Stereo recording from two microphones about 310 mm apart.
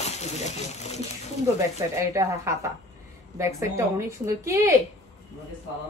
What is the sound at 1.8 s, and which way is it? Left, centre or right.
A woman's voice, centre.